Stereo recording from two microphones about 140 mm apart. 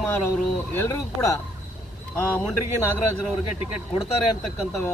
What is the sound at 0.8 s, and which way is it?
Speech, 20° left (ahead or behind).